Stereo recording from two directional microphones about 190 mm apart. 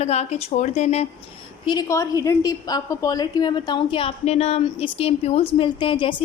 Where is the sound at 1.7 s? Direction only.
20° left (ahead or behind).